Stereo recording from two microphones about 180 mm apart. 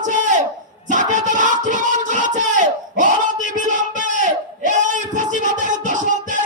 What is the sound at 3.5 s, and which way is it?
Crowd, 45° right (ahead or behind).